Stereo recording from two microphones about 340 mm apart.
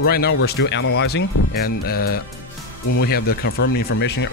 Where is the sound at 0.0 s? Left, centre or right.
Left.